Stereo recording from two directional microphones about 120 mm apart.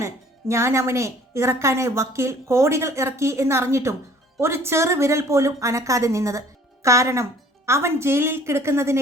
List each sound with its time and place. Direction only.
0.0 s a woman's voice: 25° right (ahead or behind)